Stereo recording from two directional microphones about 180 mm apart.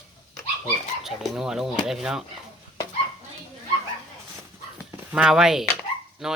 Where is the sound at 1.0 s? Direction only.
Centre (ahead or behind).